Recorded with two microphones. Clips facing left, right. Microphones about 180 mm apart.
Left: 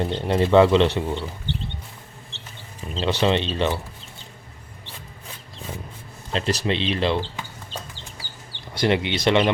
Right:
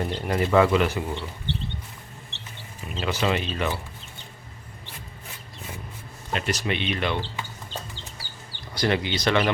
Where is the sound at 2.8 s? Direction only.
30° left (ahead or behind).